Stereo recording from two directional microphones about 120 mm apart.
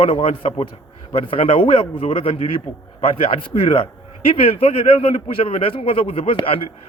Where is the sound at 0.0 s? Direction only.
55° left (ahead or behind).